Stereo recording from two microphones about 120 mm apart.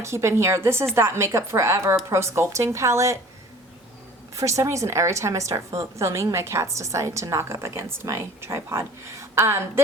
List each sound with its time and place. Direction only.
0.0 s a woman's voice: 25° right (ahead or behind)
4.4 s a woman's voice: 25° right (ahead or behind)